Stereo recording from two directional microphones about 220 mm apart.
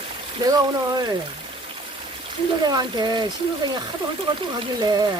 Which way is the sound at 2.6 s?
20° right (ahead or behind).